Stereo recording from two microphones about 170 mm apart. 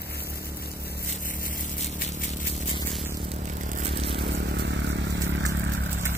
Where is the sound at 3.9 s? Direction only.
35° right (ahead or behind).